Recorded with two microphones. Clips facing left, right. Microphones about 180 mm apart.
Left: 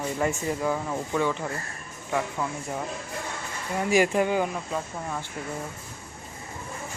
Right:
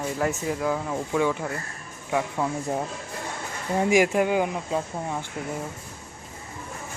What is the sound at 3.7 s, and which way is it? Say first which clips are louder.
Speech: right 2 dB; 15° right (ahead or behind).